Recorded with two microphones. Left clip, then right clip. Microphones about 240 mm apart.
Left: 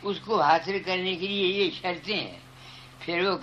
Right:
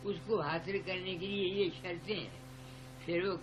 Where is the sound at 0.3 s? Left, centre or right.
Centre.